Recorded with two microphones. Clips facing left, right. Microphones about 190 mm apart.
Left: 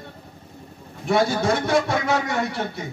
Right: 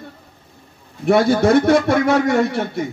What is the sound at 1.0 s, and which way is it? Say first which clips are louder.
A man's voice: right 6 dB; 60° right (ahead or behind).